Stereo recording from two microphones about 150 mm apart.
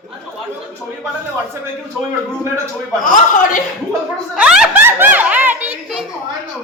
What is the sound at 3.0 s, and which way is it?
Speech, 60° left (ahead or behind).